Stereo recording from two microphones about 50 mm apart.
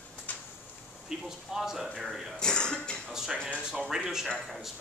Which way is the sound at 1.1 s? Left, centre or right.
Centre.